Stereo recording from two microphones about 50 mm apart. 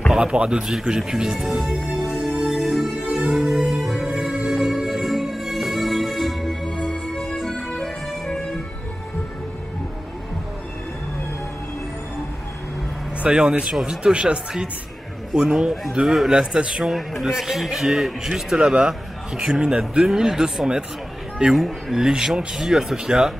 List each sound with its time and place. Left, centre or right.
0.1 s a man's voice: centre
2.3 s music: centre
13.2 s a man's voice: centre
16.9 s a man's voice: centre
18.6 s a man's voice: centre
21.5 s speech: centre
22.0 s a man's voice: centre